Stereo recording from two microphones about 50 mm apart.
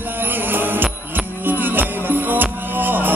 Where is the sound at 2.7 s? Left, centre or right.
Right.